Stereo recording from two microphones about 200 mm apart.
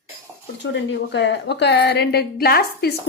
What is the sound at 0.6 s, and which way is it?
A woman's voice, 60° left (ahead or behind).